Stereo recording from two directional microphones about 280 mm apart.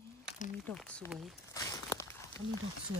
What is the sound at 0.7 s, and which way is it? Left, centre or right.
Speech, centre.